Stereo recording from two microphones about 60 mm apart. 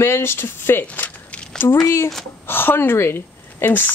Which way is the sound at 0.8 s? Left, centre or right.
Left.